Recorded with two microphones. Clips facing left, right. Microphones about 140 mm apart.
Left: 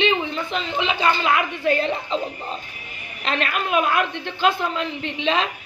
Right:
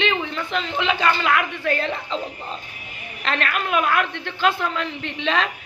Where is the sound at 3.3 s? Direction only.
15° left (ahead or behind).